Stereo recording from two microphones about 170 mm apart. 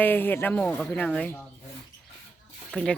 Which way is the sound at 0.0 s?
10° left (ahead or behind).